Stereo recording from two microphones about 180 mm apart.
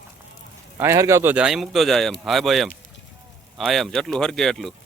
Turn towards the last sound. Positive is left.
turn(degrees=0)  # may be behind; listen again after turning